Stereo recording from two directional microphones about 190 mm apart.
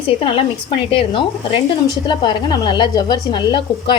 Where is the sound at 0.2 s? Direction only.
30° left (ahead or behind).